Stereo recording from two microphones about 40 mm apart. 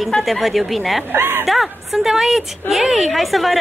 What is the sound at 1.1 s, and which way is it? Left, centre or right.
Speech, right.